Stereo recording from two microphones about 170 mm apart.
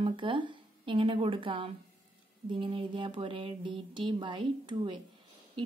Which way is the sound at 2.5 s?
30° right (ahead or behind).